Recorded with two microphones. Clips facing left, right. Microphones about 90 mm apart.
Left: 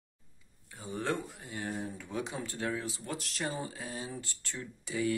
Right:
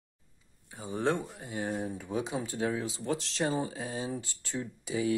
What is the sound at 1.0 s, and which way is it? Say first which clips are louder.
Speech: right 5 dB; 20° right (ahead or behind).